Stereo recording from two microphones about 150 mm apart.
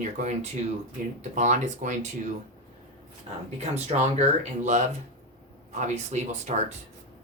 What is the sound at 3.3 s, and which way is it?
Speech, 45° right (ahead or behind).